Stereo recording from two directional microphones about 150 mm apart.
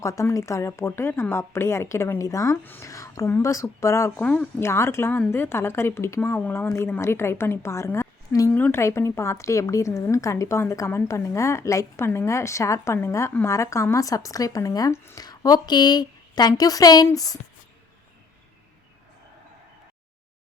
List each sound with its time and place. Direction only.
0.0 s a woman's voice: 20° left (ahead or behind)